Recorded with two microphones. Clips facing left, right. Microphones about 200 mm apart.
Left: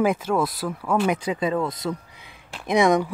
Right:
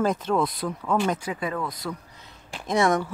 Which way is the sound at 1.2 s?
25° left (ahead or behind).